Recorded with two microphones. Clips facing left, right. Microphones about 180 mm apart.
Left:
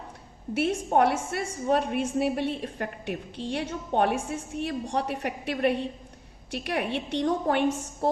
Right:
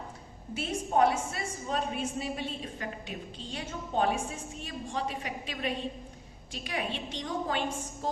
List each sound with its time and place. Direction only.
0.5 s a woman's voice: 65° left (ahead or behind)
8.0 s music: 65° left (ahead or behind)